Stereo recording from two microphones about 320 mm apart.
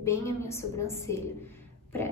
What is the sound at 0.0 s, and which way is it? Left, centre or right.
A woman's voice, centre.